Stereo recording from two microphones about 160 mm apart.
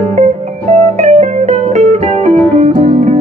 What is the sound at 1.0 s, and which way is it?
Music, 45° right (ahead or behind).